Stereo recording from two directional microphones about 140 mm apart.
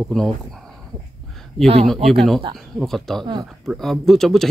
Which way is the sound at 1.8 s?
Centre (ahead or behind).